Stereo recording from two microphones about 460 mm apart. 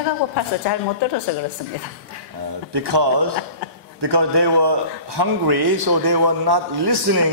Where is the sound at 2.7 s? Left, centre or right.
Right.